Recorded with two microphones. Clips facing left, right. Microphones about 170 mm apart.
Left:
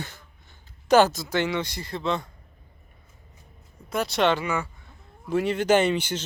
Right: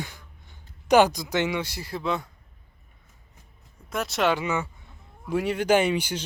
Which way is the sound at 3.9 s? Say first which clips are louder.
Left 2 dB; centre (ahead or behind).